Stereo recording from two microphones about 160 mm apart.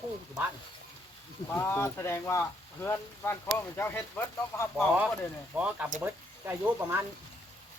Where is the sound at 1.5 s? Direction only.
10° left (ahead or behind).